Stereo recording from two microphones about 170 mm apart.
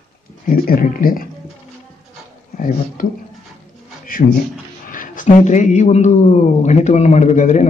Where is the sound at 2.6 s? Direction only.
50° left (ahead or behind).